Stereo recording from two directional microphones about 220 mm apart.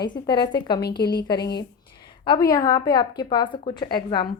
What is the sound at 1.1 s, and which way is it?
Speech, 20° left (ahead or behind).